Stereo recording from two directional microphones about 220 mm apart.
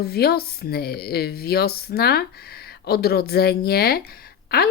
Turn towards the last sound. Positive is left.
turn(degrees=45)  # may be behind; listen again after turning